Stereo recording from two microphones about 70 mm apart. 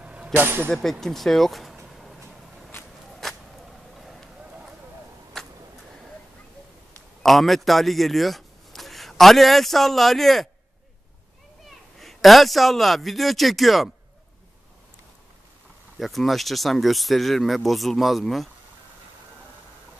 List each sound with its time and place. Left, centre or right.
0.0 s a sound: centre
0.3 s speech: right
1.0 s speech: centre
3.1 s whip: centre
5.4 s a sound: centre
7.2 s speech: centre
12.0 s speech: centre
16.0 s speech: centre